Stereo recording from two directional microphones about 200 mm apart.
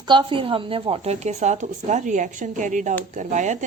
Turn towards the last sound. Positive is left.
turn(degrees=-40)  # may be behind; listen again after turning